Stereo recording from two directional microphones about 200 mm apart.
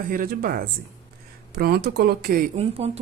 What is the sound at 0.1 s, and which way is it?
Speech, 45° right (ahead or behind).